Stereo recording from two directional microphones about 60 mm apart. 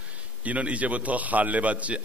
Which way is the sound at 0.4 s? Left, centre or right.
Right.